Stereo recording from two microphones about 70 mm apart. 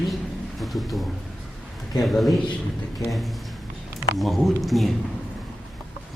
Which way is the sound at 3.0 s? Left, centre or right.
Left.